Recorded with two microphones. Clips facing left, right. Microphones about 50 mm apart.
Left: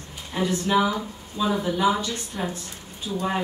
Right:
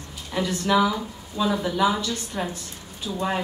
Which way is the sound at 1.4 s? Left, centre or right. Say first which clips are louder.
Even; left.